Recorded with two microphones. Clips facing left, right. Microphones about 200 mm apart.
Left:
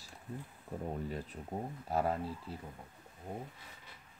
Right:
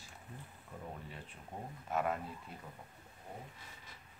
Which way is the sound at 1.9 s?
30° left (ahead or behind).